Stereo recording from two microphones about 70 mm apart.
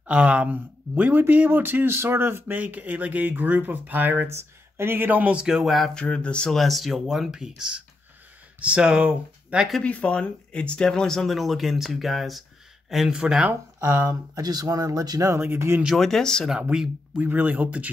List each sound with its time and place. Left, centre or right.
0.0 s speech: centre
5.6 s speech: centre
5.9 s speech: centre
6.5 s speech: centre
9.8 s speech: centre
13.2 s speech: centre
13.8 s speech: right
15.4 s speech: right
16.0 s speech: centre
16.7 s speech: centre
17.2 s speech: right